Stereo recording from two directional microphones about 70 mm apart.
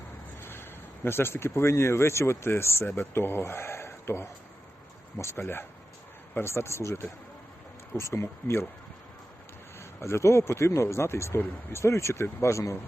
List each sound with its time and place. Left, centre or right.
0.4 s speech: left
9.7 s speech: left